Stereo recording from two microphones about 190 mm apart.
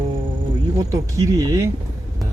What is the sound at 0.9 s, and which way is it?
Speech, 20° right (ahead or behind).